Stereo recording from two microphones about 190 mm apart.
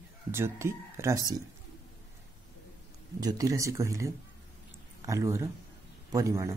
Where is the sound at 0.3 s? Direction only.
15° right (ahead or behind).